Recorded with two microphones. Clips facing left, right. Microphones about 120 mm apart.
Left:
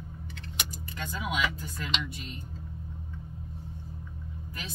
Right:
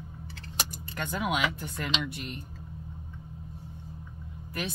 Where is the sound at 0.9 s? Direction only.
60° right (ahead or behind).